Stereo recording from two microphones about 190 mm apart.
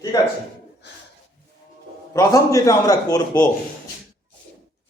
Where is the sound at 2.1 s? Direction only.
15° left (ahead or behind).